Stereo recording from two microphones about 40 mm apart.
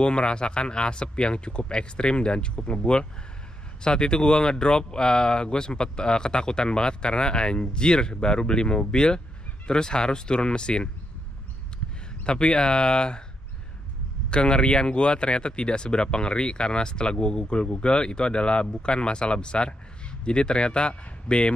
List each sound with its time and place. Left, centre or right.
0.0 s speech: left
12.2 s speech: left
14.3 s speech: left